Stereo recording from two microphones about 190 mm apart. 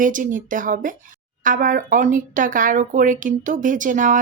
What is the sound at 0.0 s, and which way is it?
Speech, 45° right (ahead or behind).